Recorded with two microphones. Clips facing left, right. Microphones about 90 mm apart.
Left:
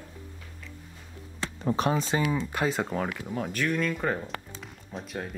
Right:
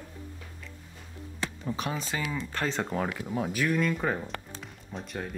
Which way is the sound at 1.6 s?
40° left (ahead or behind).